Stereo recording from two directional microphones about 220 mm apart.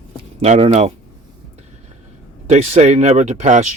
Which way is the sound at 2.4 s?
30° right (ahead or behind).